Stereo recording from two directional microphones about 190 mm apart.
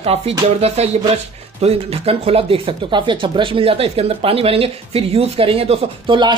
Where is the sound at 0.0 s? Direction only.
30° right (ahead or behind).